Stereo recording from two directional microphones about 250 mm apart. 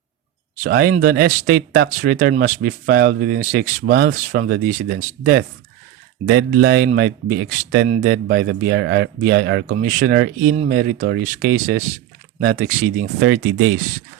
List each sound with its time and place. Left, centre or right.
0.5 s speech: right
9.7 s speech: right